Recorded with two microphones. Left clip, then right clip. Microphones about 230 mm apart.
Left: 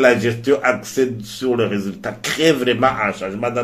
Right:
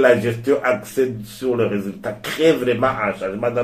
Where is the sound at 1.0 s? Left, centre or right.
Left.